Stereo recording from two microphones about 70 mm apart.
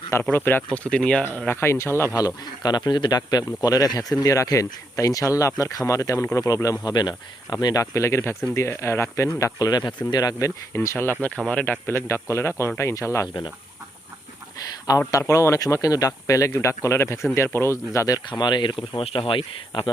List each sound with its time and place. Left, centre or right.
0.2 s speech: left
0.9 s speech: centre
1.5 s speech: left
2.1 s speech: left
6.8 s speech: left
9.6 s speech: left
10.7 s speech: left
11.3 s speech: centre
11.6 s speech: left
13.2 s speech: left
14.8 s speech: left
18.3 s speech: left